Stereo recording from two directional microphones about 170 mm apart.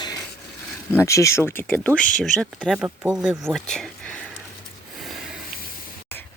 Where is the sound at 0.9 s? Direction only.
15° left (ahead or behind).